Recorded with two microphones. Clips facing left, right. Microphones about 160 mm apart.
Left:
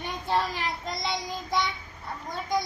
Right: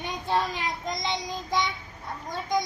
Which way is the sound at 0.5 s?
20° right (ahead or behind).